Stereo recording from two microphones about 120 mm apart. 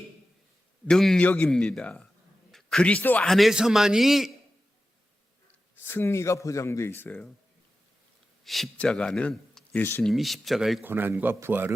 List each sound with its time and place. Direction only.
0.9 s a man's voice: 5° left (ahead or behind)
3.2 s a man's voice: centre (ahead or behind)
5.8 s speech: 20° left (ahead or behind)
8.4 s speech: centre (ahead or behind)
10.0 s a man's voice: centre (ahead or behind)
10.8 s speech: 15° right (ahead or behind)